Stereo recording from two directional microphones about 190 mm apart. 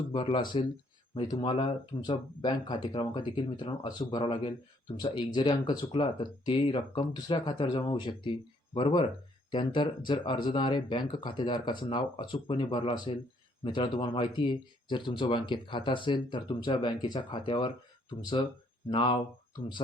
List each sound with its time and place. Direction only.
0.1 s speech: 25° left (ahead or behind)